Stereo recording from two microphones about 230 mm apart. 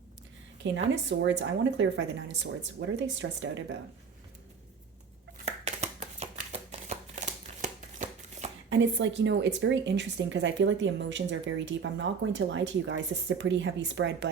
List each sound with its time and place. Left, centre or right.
0.6 s speech: right
5.6 s shuffling cards: right
8.7 s speech: right